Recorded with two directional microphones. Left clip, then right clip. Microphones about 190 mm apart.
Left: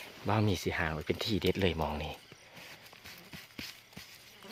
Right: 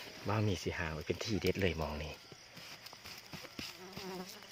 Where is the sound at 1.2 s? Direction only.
25° left (ahead or behind).